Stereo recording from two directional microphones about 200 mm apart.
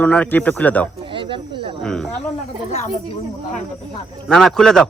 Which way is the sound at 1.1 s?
25° right (ahead or behind).